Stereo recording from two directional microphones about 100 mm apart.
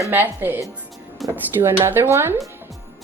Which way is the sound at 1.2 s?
Centre (ahead or behind).